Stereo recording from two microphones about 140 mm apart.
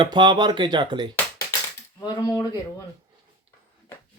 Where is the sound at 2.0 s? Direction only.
25° left (ahead or behind).